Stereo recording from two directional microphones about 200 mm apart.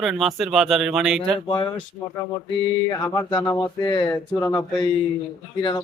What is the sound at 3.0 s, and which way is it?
Speech, 15° left (ahead or behind).